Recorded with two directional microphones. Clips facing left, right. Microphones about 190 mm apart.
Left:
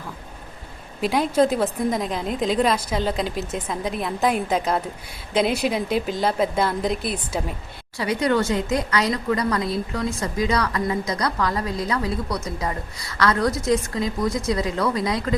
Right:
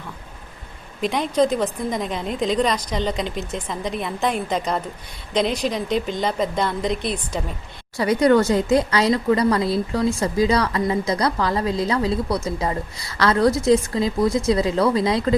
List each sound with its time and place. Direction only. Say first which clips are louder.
1.0 s a woman's voice: even; 5° left (ahead or behind)
7.9 s a woman's voice: right 5 dB; 45° right (ahead or behind); by 15.4 s 25° right (ahead or behind)